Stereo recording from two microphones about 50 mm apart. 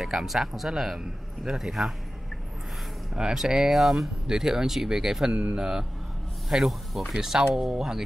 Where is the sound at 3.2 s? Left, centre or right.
Centre.